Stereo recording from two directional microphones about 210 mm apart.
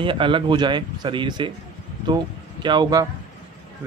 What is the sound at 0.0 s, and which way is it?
Speech, 25° right (ahead or behind).